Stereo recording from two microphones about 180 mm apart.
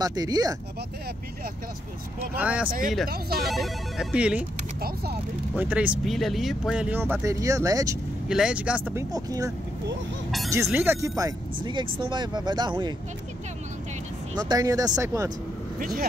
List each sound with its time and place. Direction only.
0.0 s speech: 20° right (ahead or behind)
2.3 s speech: 5° right (ahead or behind)
3.1 s speech: 60° right (ahead or behind)
3.4 s speech: centre (ahead or behind)
5.6 s speech: 10° right (ahead or behind)
8.3 s speech: 5° right (ahead or behind)
10.5 s speech: 15° right (ahead or behind)
14.3 s speech: 20° right (ahead or behind)
15.8 s speech: 55° right (ahead or behind)